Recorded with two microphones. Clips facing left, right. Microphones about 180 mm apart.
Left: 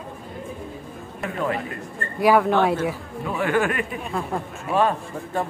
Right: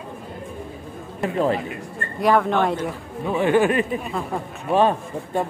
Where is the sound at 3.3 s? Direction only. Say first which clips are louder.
Right 4 dB; 20° right (ahead or behind).